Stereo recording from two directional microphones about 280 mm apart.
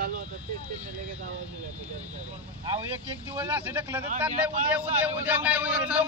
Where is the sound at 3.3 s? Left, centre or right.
Centre.